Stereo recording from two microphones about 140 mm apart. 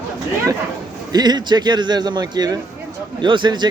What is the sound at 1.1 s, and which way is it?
Speech, 30° right (ahead or behind).